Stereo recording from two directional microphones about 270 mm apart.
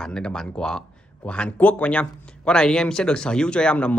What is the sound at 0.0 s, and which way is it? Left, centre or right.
A man's voice, centre.